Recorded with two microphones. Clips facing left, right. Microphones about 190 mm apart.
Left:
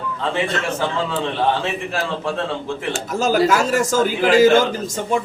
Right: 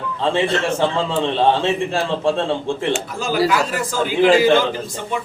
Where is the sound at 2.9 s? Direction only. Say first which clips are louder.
Left 2 dB; 45° left (ahead or behind).